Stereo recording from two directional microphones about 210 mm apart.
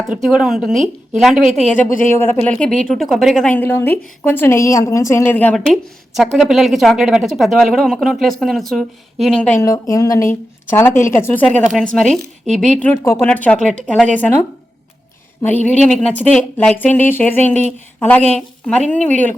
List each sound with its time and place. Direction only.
0.1 s speech: 5° right (ahead or behind)
1.9 s speech: 40° left (ahead or behind)
2.1 s a woman's voice: 10° left (ahead or behind)
9.6 s a woman's voice: 15° left (ahead or behind)